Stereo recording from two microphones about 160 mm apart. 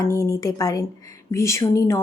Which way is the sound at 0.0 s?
20° left (ahead or behind).